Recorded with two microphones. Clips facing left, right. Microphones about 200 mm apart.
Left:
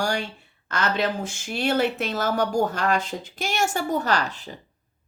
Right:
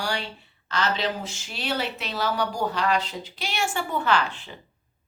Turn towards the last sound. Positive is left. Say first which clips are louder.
# right 1 dB
turn(degrees=40)  # may be behind; listen again after turning